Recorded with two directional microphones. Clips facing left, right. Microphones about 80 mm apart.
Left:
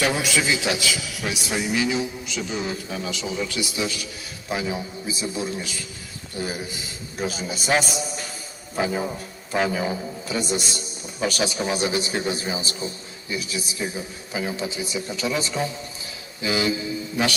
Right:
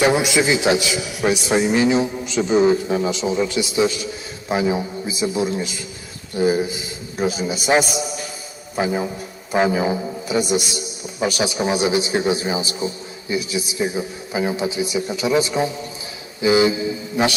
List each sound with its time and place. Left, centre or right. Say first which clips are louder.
0.0 s a man's voice: right 6 dB; right